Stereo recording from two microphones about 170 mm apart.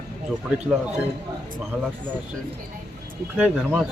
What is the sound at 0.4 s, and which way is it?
Speech, 5° right (ahead or behind).